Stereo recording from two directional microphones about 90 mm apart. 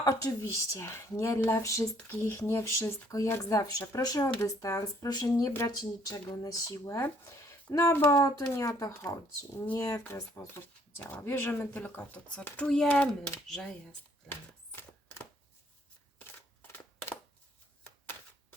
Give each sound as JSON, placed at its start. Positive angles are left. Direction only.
{"t": 0.0, "sound": "speech", "side_deg": 40}
{"t": 5.0, "sound": "speech", "side_deg": 50}
{"t": 14.3, "sound": "a sound", "side_deg": 25}